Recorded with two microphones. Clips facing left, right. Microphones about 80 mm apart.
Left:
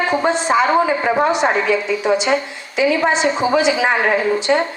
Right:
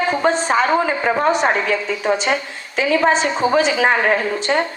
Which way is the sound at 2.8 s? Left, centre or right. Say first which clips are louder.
Even; right.